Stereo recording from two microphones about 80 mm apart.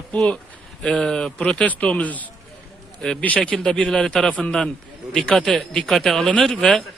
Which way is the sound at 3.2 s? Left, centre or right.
Centre.